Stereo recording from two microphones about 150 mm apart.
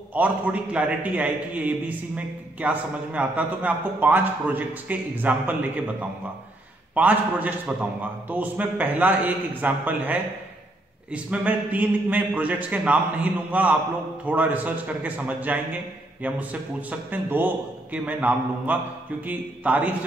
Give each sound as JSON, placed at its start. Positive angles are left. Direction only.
{"t": 0.1, "sound": "a man's voice", "side_deg": -10}